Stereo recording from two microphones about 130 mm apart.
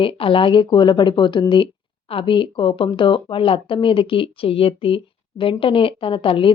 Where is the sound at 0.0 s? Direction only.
40° left (ahead or behind).